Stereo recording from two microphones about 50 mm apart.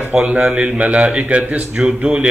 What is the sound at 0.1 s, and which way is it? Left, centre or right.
A man's voice, right.